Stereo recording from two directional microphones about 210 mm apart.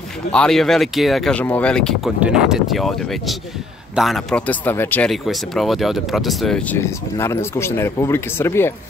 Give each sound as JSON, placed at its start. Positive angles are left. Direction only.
{"t": 0.3, "sound": "speech", "side_deg": 5}